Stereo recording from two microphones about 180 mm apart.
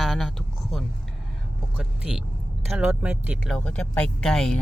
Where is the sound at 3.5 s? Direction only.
5° left (ahead or behind).